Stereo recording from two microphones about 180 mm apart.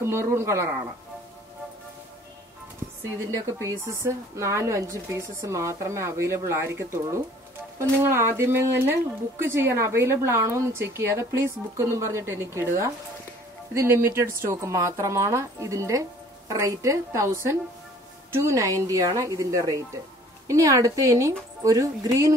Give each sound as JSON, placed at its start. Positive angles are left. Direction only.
{"t": 0.0, "sound": "speech", "side_deg": -15}
{"t": 3.3, "sound": "speech", "side_deg": -15}